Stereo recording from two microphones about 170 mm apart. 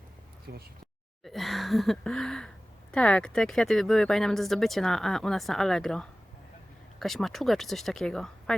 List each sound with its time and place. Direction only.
0.5 s speech: 70° right (ahead or behind)
1.2 s speech: centre (ahead or behind)